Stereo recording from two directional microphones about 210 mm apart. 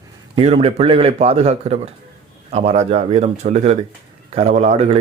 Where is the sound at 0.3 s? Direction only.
25° right (ahead or behind).